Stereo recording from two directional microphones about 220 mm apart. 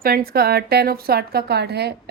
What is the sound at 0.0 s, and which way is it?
Speech, 45° right (ahead or behind).